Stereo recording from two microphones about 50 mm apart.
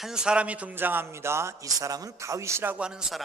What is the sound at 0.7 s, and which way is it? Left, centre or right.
Speech, right.